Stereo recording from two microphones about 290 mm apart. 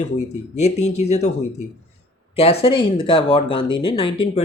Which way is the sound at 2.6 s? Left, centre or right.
Centre.